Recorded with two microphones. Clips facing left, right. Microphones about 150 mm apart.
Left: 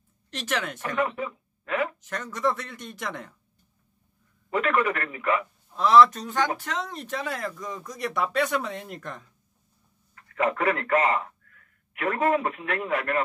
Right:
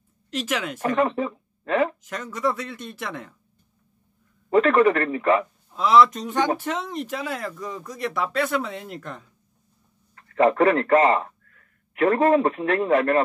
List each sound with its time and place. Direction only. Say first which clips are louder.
0.3 s speech: right 3 dB; 10° right (ahead or behind)
0.9 s speech: right 4 dB; 35° right (ahead or behind)
2.0 s speech: right 1 dB; 10° right (ahead or behind)
4.5 s speech: right 8 dB; 35° right (ahead or behind)
5.7 s speech: even; 10° right (ahead or behind)
6.2 s speech: right 4 dB; 20° right (ahead or behind)
6.9 s speech: right 3 dB; 10° right (ahead or behind)
10.1 s a man's voice: right 8 dB; 35° right (ahead or behind)